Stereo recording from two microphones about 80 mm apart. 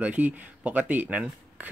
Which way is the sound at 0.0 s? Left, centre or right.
Centre.